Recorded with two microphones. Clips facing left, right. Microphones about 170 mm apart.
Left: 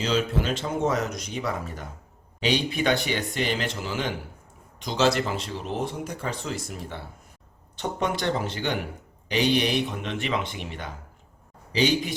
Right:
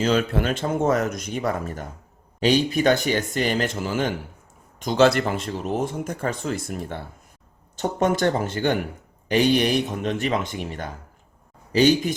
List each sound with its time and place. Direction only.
0.0 s speech: 55° right (ahead or behind)